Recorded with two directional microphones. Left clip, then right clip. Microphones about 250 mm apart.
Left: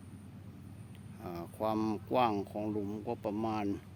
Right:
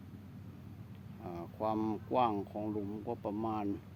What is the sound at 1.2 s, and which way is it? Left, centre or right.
Speech, centre.